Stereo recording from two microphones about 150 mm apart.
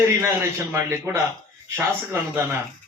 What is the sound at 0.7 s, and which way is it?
Speech, 15° right (ahead or behind).